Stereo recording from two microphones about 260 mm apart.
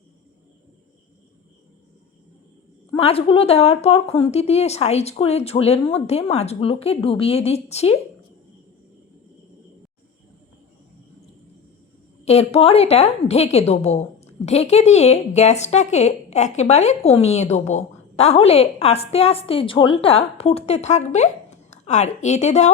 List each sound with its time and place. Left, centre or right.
2.9 s a woman's voice: left
12.2 s a woman's voice: left